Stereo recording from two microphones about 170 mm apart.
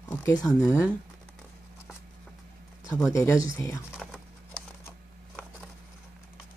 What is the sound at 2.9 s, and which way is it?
Speech, 20° left (ahead or behind).